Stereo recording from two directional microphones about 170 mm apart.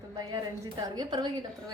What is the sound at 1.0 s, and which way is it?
Speech, 25° right (ahead or behind).